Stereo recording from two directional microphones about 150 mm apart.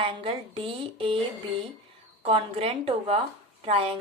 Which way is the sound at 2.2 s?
40° right (ahead or behind).